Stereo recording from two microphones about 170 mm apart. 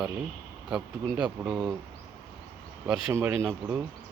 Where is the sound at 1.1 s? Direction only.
5° right (ahead or behind).